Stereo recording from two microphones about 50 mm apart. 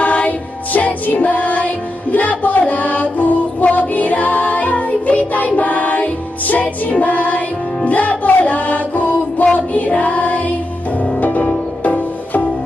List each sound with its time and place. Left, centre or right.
0.0 s music: left